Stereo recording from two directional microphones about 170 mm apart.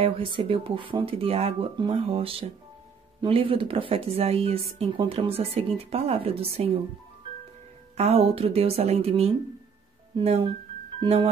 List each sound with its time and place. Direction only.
0.0 s speech: 30° right (ahead or behind)
8.0 s speech: 35° right (ahead or behind)